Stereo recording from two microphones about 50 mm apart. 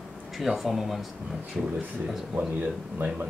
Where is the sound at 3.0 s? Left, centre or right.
Right.